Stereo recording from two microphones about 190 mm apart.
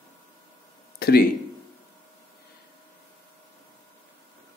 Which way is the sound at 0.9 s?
55° left (ahead or behind).